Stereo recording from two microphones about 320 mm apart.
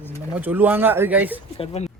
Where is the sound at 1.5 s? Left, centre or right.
Centre.